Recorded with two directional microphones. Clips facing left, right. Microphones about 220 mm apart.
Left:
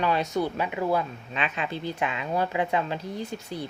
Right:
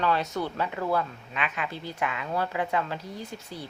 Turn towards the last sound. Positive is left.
turn(degrees=20)  # may be behind; listen again after turning